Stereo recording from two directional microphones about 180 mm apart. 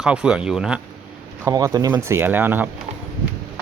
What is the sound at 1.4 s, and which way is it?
Speech, 20° right (ahead or behind).